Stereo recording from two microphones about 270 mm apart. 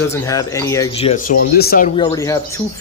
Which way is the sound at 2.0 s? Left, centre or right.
Centre.